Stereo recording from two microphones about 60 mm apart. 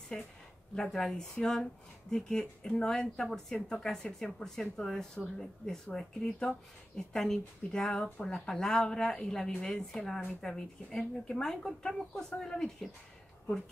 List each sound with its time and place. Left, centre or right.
0.1 s speech: centre